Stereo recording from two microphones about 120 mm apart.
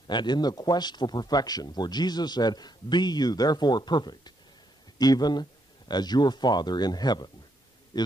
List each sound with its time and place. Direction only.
0.1 s a man's voice: 40° left (ahead or behind)